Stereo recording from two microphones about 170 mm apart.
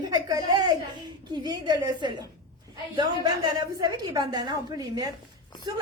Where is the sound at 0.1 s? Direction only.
25° right (ahead or behind).